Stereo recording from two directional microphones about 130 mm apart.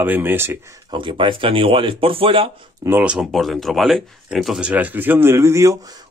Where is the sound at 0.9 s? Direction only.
40° right (ahead or behind).